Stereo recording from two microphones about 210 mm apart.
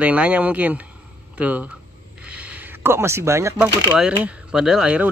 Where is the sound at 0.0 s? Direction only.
5° right (ahead or behind).